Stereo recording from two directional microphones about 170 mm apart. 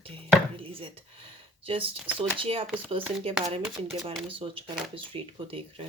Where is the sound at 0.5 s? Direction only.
30° right (ahead or behind).